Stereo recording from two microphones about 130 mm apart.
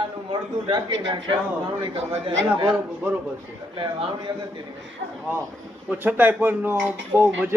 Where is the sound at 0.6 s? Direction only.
35° right (ahead or behind).